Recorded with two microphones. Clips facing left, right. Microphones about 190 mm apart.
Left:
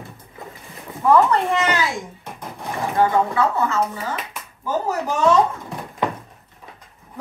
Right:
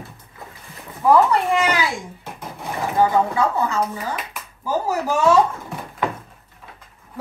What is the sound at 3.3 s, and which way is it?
Speech, 15° right (ahead or behind).